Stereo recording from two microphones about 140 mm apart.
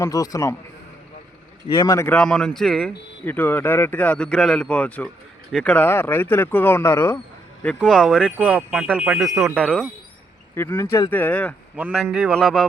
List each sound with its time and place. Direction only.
0.0 s speech: 25° left (ahead or behind)
1.7 s speech: 25° left (ahead or behind)
2.0 s speech: 5° left (ahead or behind)
3.2 s speech: 15° left (ahead or behind)
5.5 s speech: centre (ahead or behind)
5.7 s speech: 15° left (ahead or behind)
7.8 s speech: 5° right (ahead or behind)
10.5 s speech: 20° left (ahead or behind)
11.8 s speech: 10° right (ahead or behind)